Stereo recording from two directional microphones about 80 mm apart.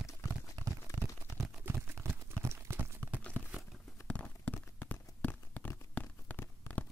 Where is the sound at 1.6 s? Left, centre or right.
Right.